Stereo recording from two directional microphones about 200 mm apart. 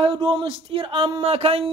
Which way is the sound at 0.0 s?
25° right (ahead or behind).